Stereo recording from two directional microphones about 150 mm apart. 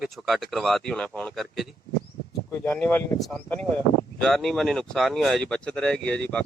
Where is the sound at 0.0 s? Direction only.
Centre (ahead or behind).